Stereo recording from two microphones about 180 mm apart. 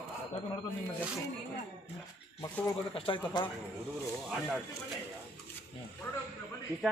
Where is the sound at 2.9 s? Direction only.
30° left (ahead or behind).